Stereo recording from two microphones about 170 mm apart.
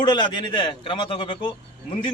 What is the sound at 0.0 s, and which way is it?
A man's voice, 25° left (ahead or behind).